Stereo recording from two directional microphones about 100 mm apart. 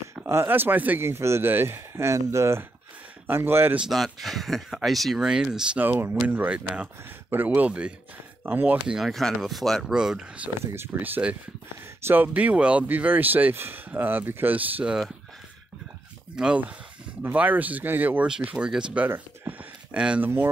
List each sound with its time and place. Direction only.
0.1 s speech: 25° right (ahead or behind)
3.8 s speech: centre (ahead or behind)
5.8 s speech: 20° right (ahead or behind)
8.8 s speech: centre (ahead or behind)
10.6 s speech: 25° right (ahead or behind)
16.3 s speech: 10° right (ahead or behind)
19.0 s a sound: 20° right (ahead or behind)